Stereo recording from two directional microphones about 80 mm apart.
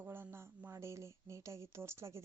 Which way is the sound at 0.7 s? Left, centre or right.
Right.